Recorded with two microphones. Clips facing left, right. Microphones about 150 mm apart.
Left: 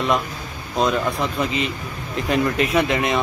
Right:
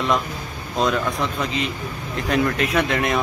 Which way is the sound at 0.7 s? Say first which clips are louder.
Left 1 dB; centre (ahead or behind).